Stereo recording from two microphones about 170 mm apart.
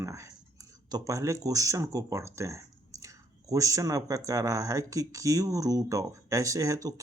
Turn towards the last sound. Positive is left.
turn(degrees=-20)  # may be behind; listen again after turning